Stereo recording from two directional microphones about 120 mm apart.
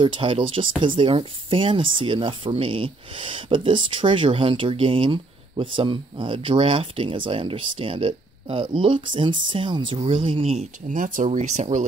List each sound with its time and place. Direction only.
0.0 s speech: 45° right (ahead or behind); by 11.8 s 75° right (ahead or behind)